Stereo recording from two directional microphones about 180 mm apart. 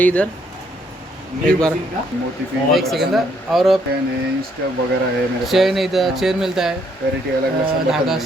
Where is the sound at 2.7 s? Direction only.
Centre (ahead or behind).